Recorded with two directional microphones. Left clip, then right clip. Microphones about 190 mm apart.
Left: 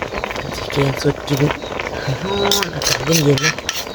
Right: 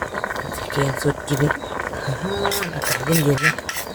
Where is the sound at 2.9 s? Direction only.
65° left (ahead or behind).